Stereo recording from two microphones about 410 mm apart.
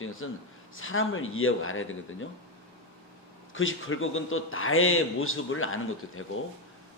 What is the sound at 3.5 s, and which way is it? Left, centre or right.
A man's voice, left.